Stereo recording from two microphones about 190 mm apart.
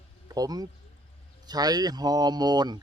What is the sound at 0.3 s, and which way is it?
Speech, 20° right (ahead or behind).